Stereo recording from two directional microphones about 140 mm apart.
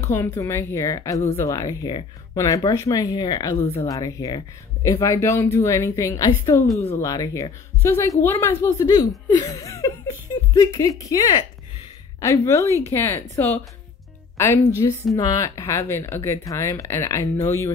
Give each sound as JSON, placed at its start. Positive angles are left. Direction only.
{"t": 0.0, "sound": "a woman's voice", "side_deg": 20}
{"t": 3.5, "sound": "a woman's voice", "side_deg": 45}
{"t": 3.8, "sound": "a woman's voice", "side_deg": 25}
{"t": 14.3, "sound": "music", "side_deg": 20}
{"t": 14.8, "sound": "a woman's voice", "side_deg": 30}